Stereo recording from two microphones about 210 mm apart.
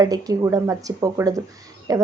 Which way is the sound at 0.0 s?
15° right (ahead or behind).